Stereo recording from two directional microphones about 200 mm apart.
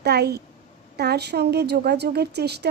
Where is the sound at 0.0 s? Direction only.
55° right (ahead or behind).